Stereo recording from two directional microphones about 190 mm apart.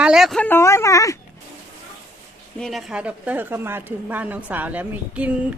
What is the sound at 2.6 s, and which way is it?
A woman's voice, centre (ahead or behind).